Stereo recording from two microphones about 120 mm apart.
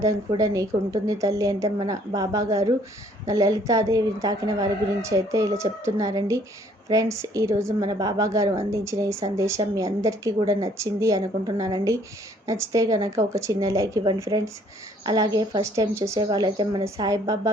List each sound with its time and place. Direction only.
0.0 s speech: 30° right (ahead or behind)